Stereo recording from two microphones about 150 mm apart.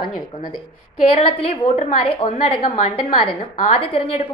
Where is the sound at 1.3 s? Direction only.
45° left (ahead or behind).